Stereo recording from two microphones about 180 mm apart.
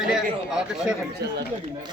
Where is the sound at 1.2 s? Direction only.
65° right (ahead or behind).